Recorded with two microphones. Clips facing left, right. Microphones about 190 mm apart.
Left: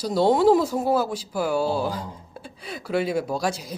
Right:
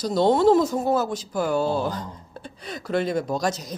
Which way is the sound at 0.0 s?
10° left (ahead or behind).